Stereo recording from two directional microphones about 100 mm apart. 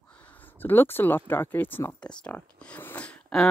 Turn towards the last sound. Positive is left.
turn(degrees=10)  # may be behind; listen again after turning